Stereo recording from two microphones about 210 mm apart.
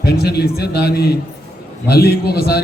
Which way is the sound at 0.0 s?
50° left (ahead or behind).